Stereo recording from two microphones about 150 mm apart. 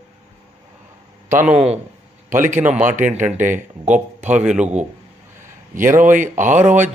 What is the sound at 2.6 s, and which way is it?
Speech, 10° right (ahead or behind).